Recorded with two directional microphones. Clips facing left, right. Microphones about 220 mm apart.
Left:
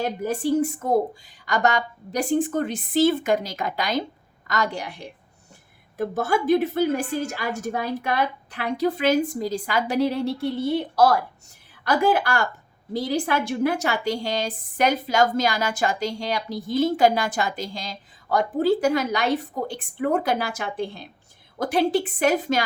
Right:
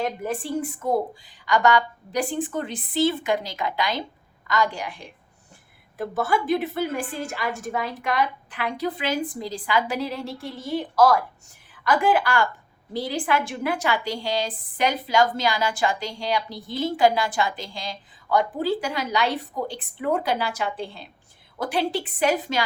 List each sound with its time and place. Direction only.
0.3 s a woman's voice: 40° left (ahead or behind)